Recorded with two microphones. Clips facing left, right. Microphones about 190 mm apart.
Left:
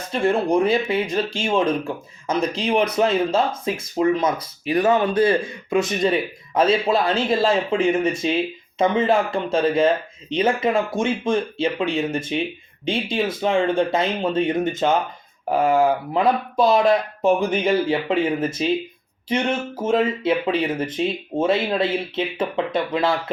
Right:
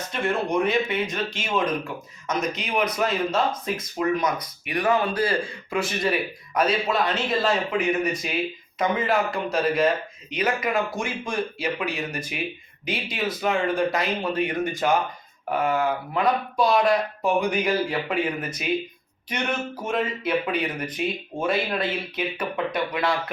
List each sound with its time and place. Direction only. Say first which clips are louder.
0.1 s speech: left 6 dB; 30° left (ahead or behind)